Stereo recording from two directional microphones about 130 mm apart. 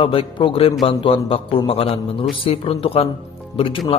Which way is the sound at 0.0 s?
45° left (ahead or behind).